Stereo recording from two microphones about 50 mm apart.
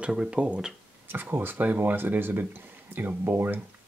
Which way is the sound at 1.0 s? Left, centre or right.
Right.